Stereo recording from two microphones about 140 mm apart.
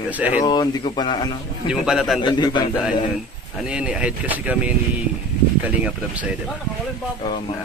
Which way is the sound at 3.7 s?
10° right (ahead or behind).